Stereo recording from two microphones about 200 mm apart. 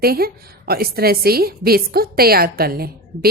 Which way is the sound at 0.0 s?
50° right (ahead or behind).